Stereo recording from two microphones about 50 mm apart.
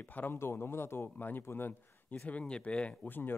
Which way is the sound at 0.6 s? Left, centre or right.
Left.